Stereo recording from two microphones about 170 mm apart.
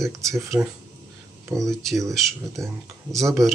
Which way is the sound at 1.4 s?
20° right (ahead or behind).